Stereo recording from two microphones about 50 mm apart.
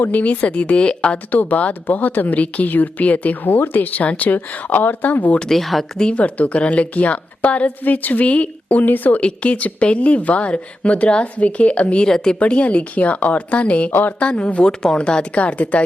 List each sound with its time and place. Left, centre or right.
0.1 s a woman's voice: left
1.3 s speech: left
5.4 s speech: centre
6.0 s a woman's voice: left
12.0 s a woman's voice: centre
12.4 s a woman's voice: left
14.3 s a woman's voice: left